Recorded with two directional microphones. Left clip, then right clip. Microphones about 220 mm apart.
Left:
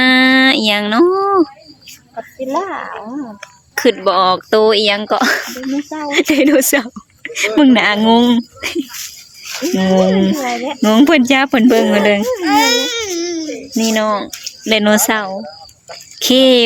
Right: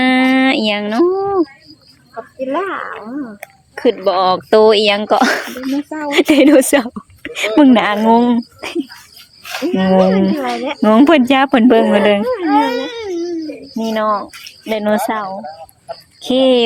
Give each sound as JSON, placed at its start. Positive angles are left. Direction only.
{"t": 0.0, "sound": "music", "side_deg": 0}
{"t": 2.5, "sound": "speech", "side_deg": 5}
{"t": 12.4, "sound": "baby cry", "side_deg": 15}
{"t": 14.7, "sound": "speech", "side_deg": 15}